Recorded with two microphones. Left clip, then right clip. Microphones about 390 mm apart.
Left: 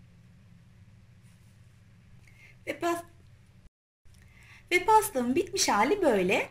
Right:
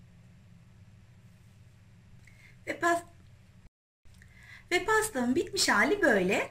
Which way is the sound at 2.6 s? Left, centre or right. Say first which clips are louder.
Right 2 dB; centre.